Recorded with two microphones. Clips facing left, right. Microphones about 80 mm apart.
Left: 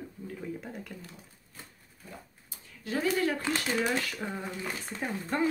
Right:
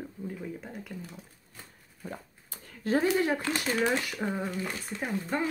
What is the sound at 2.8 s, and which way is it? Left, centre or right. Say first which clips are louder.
Speech: right 5 dB; right.